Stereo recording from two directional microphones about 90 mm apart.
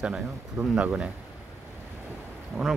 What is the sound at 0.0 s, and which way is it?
Speech, 10° right (ahead or behind).